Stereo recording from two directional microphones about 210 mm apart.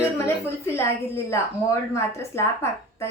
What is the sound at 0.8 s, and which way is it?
A woman's voice, 15° left (ahead or behind).